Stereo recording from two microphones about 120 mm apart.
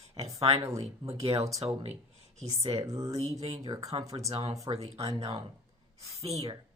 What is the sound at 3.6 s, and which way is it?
Speech, 30° right (ahead or behind).